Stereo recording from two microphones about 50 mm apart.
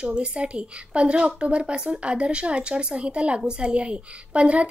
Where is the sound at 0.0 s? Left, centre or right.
Centre.